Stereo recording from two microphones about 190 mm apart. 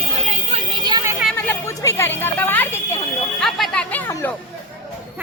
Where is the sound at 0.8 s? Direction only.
20° right (ahead or behind).